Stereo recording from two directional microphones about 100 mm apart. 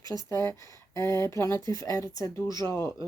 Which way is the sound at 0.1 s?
30° left (ahead or behind).